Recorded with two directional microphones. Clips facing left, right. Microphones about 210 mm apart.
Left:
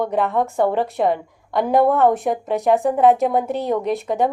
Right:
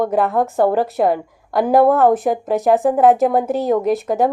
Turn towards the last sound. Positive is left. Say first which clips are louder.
# right 3 dB
turn(degrees=-5)  # may be behind; listen again after turning